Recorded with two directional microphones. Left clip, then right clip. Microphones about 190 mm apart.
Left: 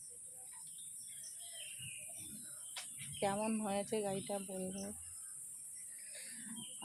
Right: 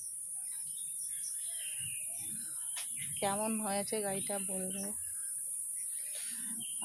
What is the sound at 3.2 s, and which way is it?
Speech, 15° right (ahead or behind).